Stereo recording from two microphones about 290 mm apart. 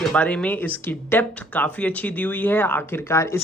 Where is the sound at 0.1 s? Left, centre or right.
Centre.